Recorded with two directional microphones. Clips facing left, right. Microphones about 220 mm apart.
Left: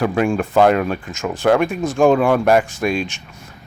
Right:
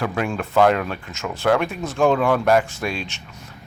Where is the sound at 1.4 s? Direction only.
15° left (ahead or behind).